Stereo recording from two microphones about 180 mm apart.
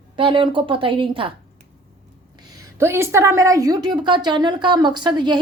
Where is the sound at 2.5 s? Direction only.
15° right (ahead or behind).